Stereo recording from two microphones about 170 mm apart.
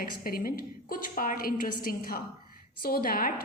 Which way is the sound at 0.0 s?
60° left (ahead or behind).